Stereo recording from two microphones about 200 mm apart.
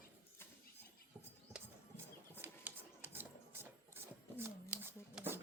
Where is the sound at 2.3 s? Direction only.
10° right (ahead or behind).